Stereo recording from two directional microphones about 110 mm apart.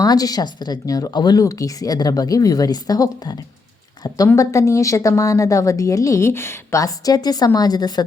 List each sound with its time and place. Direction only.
0.0 s a woman's voice: 35° left (ahead or behind)